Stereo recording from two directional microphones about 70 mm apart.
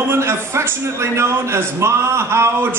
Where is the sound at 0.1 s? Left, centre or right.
Right.